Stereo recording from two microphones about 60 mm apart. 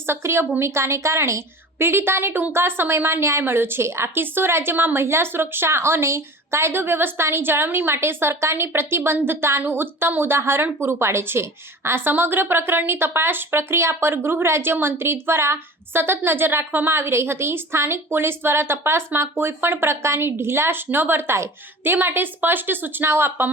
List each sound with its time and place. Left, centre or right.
0.1 s a woman's voice: right
1.8 s a woman's voice: right